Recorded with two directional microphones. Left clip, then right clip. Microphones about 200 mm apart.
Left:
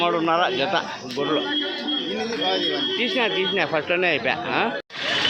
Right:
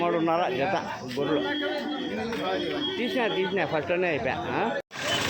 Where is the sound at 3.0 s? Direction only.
5° right (ahead or behind).